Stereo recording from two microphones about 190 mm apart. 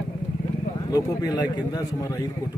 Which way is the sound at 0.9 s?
20° left (ahead or behind).